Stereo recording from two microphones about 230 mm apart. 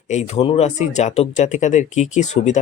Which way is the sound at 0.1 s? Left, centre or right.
Left.